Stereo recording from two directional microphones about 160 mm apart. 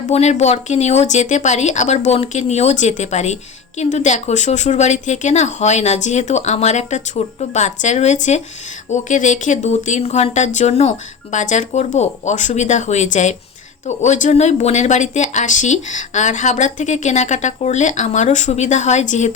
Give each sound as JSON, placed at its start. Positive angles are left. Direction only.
{"t": 0.1, "sound": "speech", "side_deg": 45}